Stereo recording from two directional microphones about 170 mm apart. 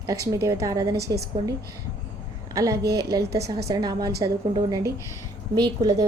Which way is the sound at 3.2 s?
75° right (ahead or behind).